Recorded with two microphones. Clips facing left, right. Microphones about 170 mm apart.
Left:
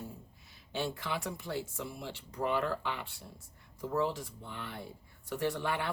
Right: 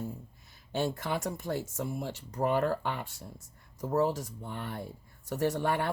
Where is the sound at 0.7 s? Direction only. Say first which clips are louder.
Right 4 dB; 45° right (ahead or behind).